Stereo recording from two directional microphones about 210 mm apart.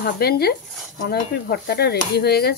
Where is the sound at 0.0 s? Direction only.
45° left (ahead or behind).